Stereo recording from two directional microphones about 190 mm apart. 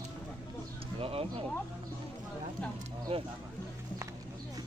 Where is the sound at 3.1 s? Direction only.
30° right (ahead or behind).